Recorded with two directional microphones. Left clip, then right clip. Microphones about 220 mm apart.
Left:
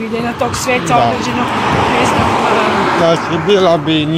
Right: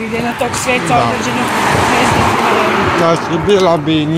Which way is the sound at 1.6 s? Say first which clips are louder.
Right 1 dB; 50° right (ahead or behind).